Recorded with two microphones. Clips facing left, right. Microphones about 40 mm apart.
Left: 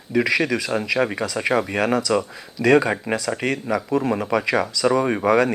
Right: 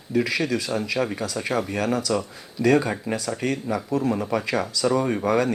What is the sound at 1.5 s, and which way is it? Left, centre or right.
Speech, left.